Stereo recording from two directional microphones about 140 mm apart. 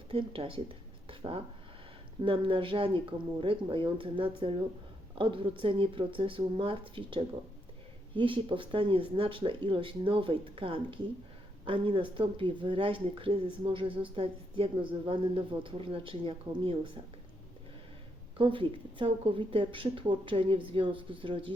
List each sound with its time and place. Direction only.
0.1 s speech: 40° right (ahead or behind)
18.3 s speech: 40° right (ahead or behind)